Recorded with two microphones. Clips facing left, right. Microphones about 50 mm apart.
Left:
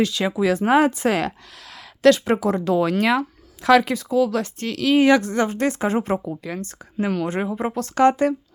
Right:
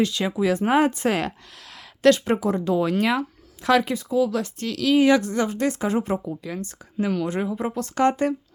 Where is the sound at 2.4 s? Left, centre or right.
Left.